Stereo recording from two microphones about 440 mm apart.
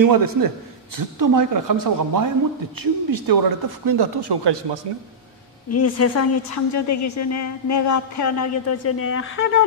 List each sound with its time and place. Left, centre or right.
0.0 s a man's voice: right
5.7 s a woman's voice: left